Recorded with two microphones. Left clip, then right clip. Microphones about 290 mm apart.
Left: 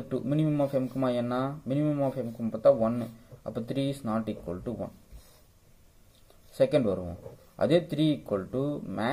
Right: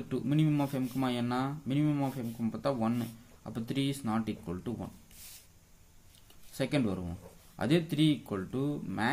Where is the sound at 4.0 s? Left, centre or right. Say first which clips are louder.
Left 3 dB; centre.